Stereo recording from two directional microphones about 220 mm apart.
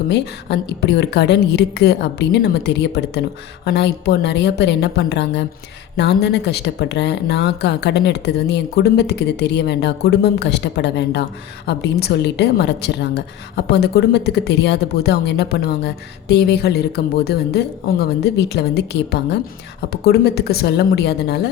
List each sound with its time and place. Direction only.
0.1 s speech: 50° left (ahead or behind)